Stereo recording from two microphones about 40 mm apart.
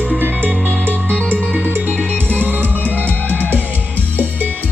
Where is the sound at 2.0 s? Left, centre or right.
Left.